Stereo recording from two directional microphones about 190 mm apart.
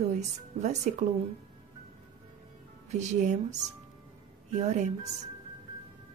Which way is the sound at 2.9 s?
35° right (ahead or behind).